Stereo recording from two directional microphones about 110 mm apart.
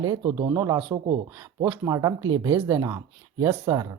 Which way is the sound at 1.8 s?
30° right (ahead or behind).